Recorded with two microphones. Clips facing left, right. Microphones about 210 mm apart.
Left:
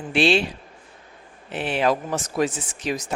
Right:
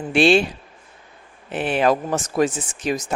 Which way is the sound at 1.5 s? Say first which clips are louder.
Right 3 dB; 50° right (ahead or behind).